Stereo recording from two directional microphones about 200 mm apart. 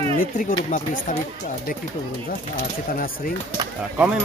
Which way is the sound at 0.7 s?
40° left (ahead or behind).